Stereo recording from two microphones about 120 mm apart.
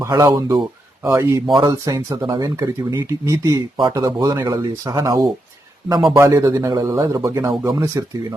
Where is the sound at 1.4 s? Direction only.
40° right (ahead or behind).